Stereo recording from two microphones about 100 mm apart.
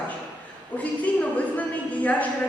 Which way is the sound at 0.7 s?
15° left (ahead or behind).